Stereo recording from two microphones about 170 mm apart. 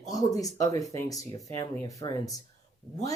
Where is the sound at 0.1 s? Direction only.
20° left (ahead or behind).